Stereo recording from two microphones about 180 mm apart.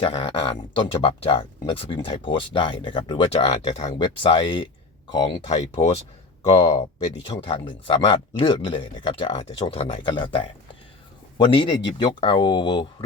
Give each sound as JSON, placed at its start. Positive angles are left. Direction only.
{"t": 0.0, "sound": "speech", "side_deg": 30}